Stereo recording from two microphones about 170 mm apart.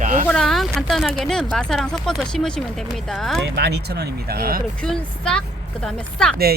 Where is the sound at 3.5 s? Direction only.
75° right (ahead or behind).